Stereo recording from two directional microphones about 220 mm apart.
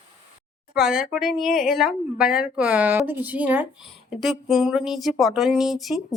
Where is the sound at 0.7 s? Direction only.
Centre (ahead or behind).